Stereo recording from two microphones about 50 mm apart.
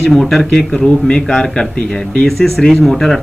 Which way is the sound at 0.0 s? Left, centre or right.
Centre.